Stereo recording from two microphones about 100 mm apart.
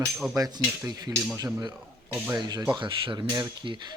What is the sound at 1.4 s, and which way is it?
Speech, 35° right (ahead or behind).